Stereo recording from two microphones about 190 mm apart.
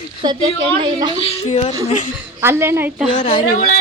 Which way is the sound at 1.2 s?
35° left (ahead or behind).